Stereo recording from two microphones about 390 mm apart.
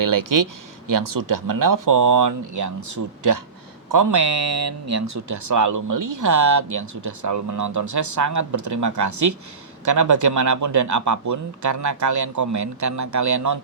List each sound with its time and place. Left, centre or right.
0.0 s speech: right